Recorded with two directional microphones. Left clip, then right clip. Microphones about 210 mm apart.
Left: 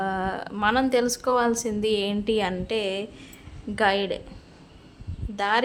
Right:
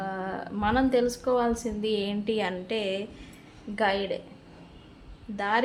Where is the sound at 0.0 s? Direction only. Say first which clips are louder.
Left 5 dB; 35° left (ahead or behind).